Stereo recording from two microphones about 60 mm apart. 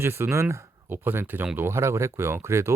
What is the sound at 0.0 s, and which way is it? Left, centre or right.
Speech, right.